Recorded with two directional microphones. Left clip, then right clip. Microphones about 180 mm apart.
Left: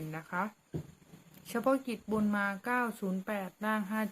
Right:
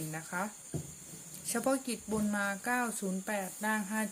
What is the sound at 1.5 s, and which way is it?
Speech, 15° left (ahead or behind).